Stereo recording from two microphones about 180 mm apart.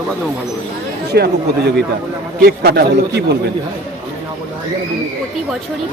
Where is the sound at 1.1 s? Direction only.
65° right (ahead or behind).